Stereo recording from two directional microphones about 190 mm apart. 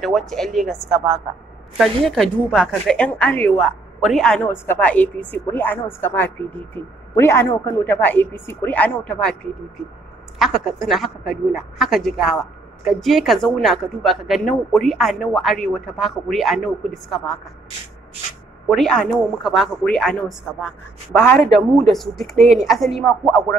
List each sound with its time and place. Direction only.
0.0 s a woman's voice: centre (ahead or behind)
10.4 s a woman's voice: centre (ahead or behind)
18.7 s a woman's voice: centre (ahead or behind)
21.2 s a woman's voice: 10° left (ahead or behind)
21.5 s a woman's voice: centre (ahead or behind)